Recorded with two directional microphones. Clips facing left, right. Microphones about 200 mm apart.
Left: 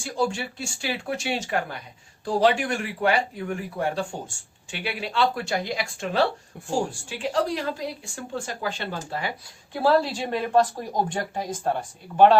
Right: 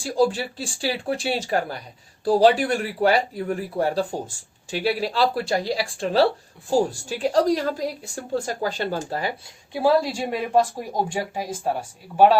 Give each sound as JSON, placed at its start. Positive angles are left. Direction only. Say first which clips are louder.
{"t": 0.0, "sound": "a woman's voice", "louder": "right 5 dB", "side_deg": -35}
{"t": 9.7, "sound": "speech", "louder": "right 1 dB", "side_deg": -10}